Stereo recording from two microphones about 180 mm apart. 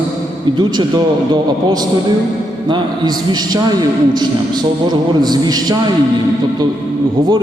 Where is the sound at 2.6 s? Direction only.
25° right (ahead or behind).